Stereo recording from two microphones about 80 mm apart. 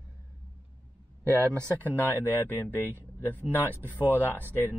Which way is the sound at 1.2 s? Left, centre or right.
Right.